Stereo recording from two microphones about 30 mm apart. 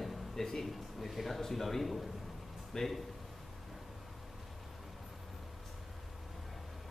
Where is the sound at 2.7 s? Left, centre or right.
Centre.